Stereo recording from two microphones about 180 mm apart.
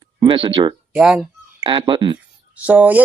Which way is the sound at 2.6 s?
10° right (ahead or behind).